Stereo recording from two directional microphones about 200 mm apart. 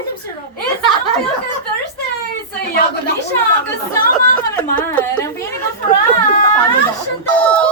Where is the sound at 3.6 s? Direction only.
10° left (ahead or behind).